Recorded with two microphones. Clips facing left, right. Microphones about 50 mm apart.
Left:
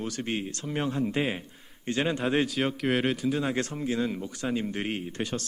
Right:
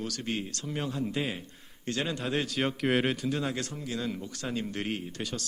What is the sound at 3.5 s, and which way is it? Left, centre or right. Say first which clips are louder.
Speech: left 5 dB; left.